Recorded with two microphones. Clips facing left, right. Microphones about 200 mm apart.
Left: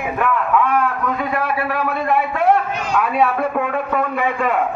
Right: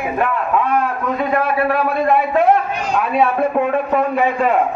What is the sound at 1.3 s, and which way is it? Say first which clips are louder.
A man's voice: right 4 dB; 25° right (ahead or behind).